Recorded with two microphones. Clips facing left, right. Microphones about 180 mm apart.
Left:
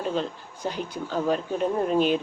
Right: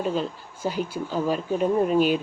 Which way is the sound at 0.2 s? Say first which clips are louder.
Right 1 dB; 5° right (ahead or behind).